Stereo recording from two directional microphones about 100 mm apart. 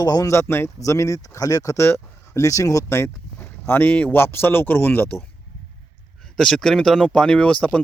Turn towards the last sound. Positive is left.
turn(degrees=10)  # may be behind; listen again after turning